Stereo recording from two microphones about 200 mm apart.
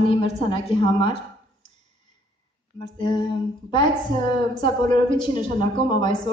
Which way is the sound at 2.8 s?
20° left (ahead or behind).